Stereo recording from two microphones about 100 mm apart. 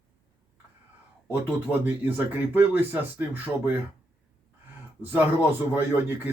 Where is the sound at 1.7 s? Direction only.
20° right (ahead or behind).